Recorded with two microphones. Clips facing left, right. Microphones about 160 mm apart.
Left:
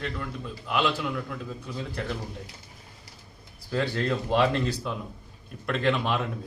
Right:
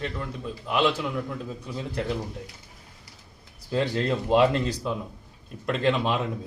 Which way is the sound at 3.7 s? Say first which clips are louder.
Right 2 dB; 20° right (ahead or behind).